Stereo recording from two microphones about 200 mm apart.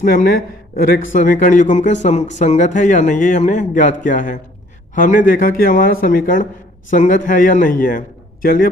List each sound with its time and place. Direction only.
0.0 s a man's voice: 45° left (ahead or behind)